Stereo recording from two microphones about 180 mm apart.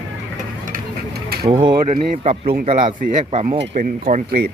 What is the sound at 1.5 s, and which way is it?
Speech, 25° right (ahead or behind).